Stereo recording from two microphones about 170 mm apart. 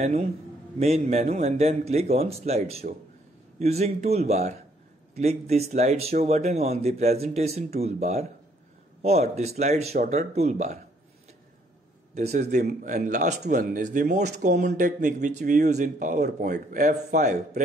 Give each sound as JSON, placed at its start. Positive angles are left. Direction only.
{"t": 0.0, "sound": "a man's voice", "side_deg": -40}
{"t": 12.4, "sound": "speech", "side_deg": -45}